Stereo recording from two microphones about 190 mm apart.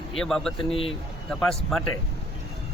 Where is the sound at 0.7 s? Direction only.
30° left (ahead or behind).